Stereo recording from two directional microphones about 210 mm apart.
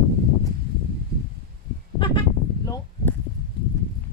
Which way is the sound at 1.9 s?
25° left (ahead or behind).